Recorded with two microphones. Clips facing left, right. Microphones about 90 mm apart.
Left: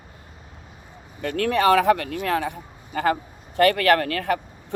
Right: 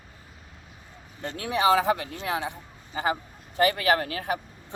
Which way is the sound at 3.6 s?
70° left (ahead or behind).